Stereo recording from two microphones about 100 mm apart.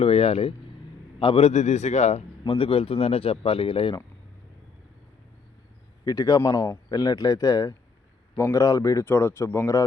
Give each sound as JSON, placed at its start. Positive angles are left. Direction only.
{"t": 0.0, "sound": "a man's voice", "side_deg": 85}
{"t": 2.5, "sound": "speech", "side_deg": 65}
{"t": 6.1, "sound": "speech", "side_deg": 35}
{"t": 9.0, "sound": "speech", "side_deg": 25}